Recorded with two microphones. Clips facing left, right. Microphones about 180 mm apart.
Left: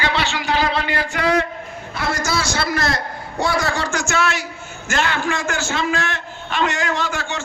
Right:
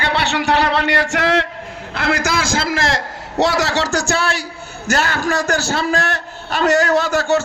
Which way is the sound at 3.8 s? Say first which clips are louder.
Right 2 dB; 35° right (ahead or behind).